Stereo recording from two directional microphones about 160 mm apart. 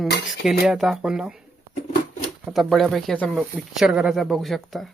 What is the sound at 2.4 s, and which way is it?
Speech, centre (ahead or behind).